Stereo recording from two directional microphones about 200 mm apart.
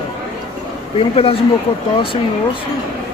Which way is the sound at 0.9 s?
30° left (ahead or behind).